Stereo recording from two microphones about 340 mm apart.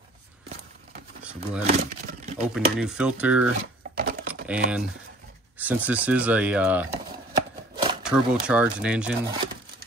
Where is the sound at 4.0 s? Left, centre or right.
Right.